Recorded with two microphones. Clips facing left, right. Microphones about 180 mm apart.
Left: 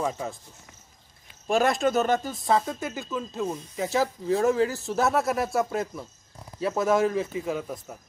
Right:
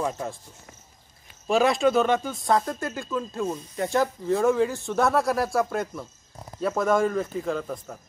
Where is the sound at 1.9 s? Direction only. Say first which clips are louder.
Right 2 dB; 40° left (ahead or behind).